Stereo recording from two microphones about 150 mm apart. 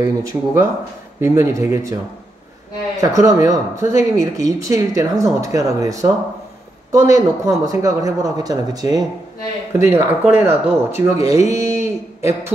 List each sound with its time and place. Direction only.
0.0 s speech: 20° right (ahead or behind)
3.0 s speech: 20° right (ahead or behind)
11.5 s a sound: 20° right (ahead or behind)